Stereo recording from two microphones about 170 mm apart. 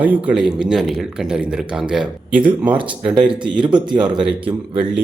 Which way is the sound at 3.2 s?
25° right (ahead or behind).